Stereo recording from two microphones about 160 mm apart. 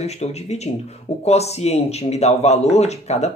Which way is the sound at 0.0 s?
40° left (ahead or behind).